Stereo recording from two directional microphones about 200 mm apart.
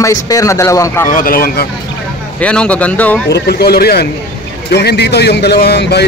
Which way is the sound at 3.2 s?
55° left (ahead or behind).